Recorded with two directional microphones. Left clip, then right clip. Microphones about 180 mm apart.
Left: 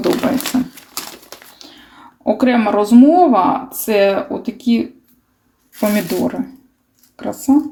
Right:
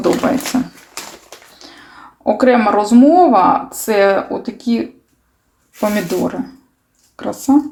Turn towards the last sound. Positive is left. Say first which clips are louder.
# right 1 dB
turn(degrees=0)  # may be behind; listen again after turning